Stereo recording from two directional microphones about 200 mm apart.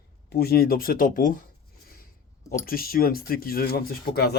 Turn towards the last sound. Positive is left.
turn(degrees=50)  # may be behind; listen again after turning